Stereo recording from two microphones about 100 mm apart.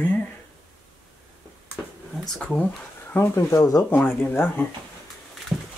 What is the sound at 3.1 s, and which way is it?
Speech, 25° left (ahead or behind).